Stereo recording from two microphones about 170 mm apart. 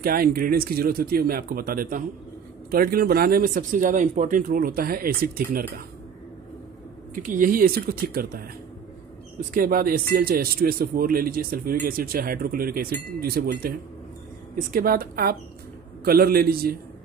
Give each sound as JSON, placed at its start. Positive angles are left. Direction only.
{"t": 0.0, "sound": "speech", "side_deg": -60}
{"t": 7.2, "sound": "speech", "side_deg": -55}
{"t": 9.5, "sound": "speech", "side_deg": -55}